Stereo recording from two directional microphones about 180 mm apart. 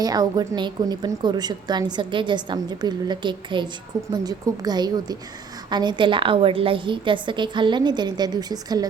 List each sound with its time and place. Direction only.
0.0 s a woman's voice: 20° right (ahead or behind)